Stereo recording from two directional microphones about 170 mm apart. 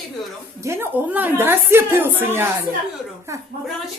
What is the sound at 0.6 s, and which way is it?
A woman's voice, 15° right (ahead or behind).